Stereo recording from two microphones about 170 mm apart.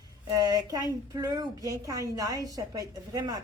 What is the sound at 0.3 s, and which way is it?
A woman's voice, 20° right (ahead or behind).